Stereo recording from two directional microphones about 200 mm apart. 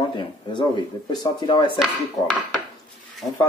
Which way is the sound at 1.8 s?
5° left (ahead or behind).